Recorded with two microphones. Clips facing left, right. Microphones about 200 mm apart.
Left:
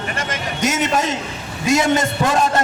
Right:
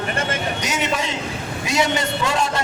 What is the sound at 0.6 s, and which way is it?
A man's voice, 50° left (ahead or behind).